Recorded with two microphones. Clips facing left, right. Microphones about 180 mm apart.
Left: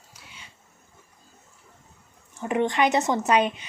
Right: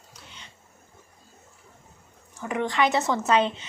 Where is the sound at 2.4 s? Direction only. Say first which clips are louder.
Left 2 dB; 20° left (ahead or behind).